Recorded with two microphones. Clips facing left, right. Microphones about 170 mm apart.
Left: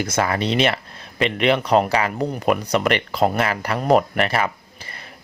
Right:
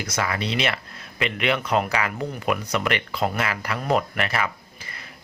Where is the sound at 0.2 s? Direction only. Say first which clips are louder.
Left 5 dB; 45° left (ahead or behind).